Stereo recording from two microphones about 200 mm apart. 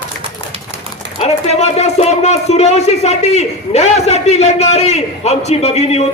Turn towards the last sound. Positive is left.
turn(degrees=30)  # may be behind; listen again after turning